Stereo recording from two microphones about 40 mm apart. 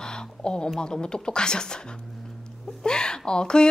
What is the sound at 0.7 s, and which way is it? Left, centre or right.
A woman's voice, left.